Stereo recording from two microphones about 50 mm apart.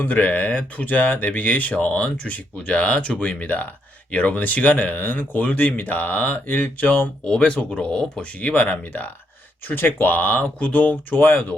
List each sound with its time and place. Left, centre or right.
0.0 s speech: left
7.3 s speech: centre; by 11.5 s left